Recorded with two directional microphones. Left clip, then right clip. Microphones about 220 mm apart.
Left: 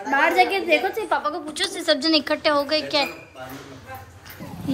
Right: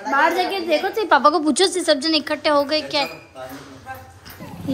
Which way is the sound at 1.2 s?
25° right (ahead or behind).